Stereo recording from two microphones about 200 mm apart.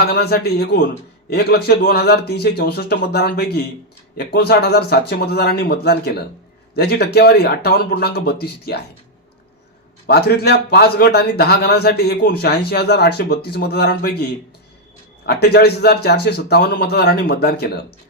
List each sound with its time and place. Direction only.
0.0 s a man's voice: 55° left (ahead or behind)
10.1 s a man's voice: 55° left (ahead or behind)
15.3 s a man's voice: 55° left (ahead or behind)